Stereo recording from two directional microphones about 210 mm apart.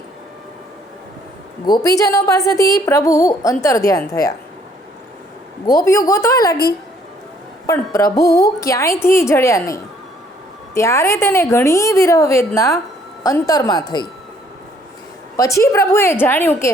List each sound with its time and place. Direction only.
1.6 s a woman's voice: 20° left (ahead or behind)
5.6 s a woman's voice: 15° left (ahead or behind)
7.7 s a woman's voice: 15° left (ahead or behind)
15.4 s a woman's voice: 15° left (ahead or behind)